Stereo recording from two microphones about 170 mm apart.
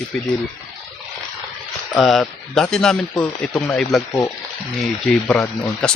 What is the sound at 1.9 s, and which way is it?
Speech, centre (ahead or behind).